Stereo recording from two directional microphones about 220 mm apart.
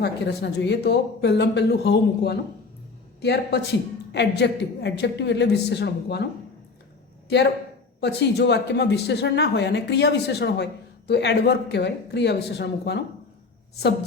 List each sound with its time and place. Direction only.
0.0 s a woman's voice: 50° left (ahead or behind)
7.3 s a woman's voice: 50° left (ahead or behind)